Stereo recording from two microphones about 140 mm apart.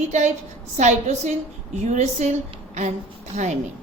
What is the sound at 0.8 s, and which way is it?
A woman's voice, 55° right (ahead or behind).